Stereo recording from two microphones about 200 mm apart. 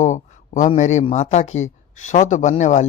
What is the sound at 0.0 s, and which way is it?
A man's voice, 35° left (ahead or behind).